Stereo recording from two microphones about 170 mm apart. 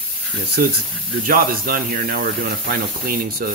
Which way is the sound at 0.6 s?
55° right (ahead or behind).